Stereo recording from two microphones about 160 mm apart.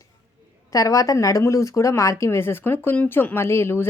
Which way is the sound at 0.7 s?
20° left (ahead or behind).